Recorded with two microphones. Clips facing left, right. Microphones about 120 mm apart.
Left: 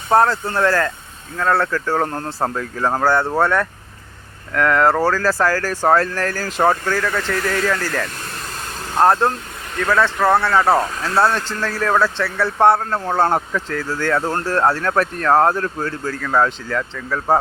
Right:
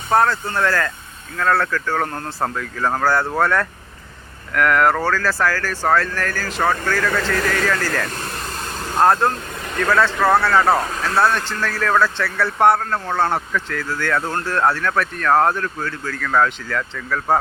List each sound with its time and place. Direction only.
0.1 s speech: 30° left (ahead or behind)
5.4 s speech: 35° left (ahead or behind)
6.6 s speech: 20° left (ahead or behind)
10.2 s a man's voice: centre (ahead or behind)
10.4 s speech: 10° left (ahead or behind)
11.1 s speech: 30° left (ahead or behind)
12.1 s speech: 25° left (ahead or behind)
13.1 s speech: 40° left (ahead or behind)
16.2 s speech: 15° left (ahead or behind)